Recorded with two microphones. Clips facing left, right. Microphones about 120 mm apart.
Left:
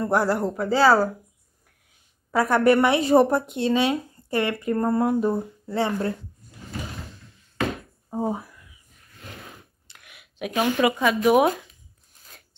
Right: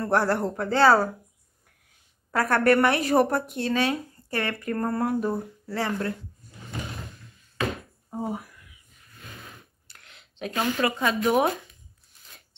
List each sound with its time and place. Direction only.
0.0 s speech: 10° left (ahead or behind)
2.3 s speech: 15° left (ahead or behind)
8.1 s a sound: 25° left (ahead or behind)
11.0 s speech: 5° left (ahead or behind)